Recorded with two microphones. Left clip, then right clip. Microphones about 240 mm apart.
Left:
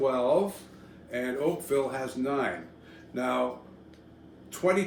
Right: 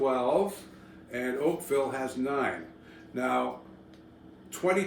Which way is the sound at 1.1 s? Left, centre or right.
Centre.